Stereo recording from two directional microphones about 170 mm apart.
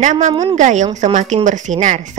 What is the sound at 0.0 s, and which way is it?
Speech, 45° right (ahead or behind).